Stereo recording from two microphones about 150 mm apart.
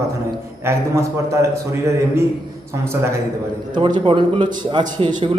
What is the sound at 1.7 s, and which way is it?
Speech, 20° right (ahead or behind).